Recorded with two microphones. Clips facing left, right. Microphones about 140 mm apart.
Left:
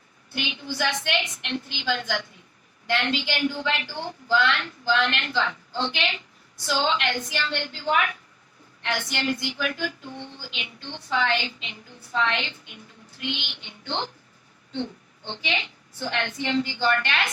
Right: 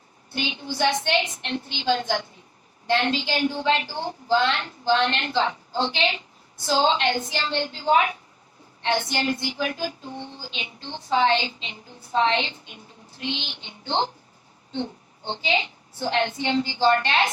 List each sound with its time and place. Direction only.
0.3 s a woman's voice: 30° right (ahead or behind)
15.3 s a woman's voice: 30° right (ahead or behind)